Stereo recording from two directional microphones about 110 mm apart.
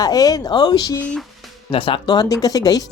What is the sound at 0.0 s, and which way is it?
Speech, 35° left (ahead or behind).